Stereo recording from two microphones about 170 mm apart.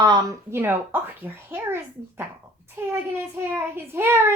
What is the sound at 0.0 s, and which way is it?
A child's voice, 20° right (ahead or behind).